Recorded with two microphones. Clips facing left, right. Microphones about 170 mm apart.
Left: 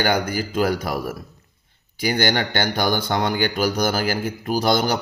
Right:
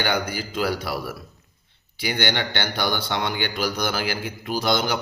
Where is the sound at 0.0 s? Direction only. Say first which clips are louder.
Left 4 dB; 45° left (ahead or behind).